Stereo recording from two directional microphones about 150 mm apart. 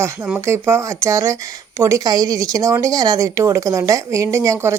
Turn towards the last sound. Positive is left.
turn(degrees=-20)  # may be behind; listen again after turning